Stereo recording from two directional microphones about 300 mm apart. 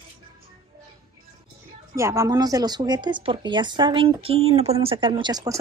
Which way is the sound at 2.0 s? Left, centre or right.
Centre.